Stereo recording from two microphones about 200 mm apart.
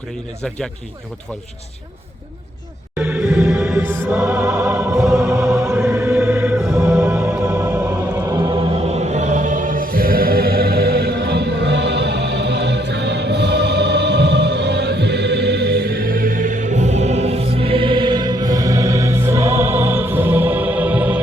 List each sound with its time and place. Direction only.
2.9 s music: 5° right (ahead or behind)
8.3 s music: 20° right (ahead or behind)
8.7 s chant: 35° right (ahead or behind); by 21.2 s 10° right (ahead or behind)